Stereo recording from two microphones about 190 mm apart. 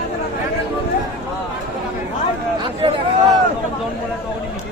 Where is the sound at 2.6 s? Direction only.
25° right (ahead or behind).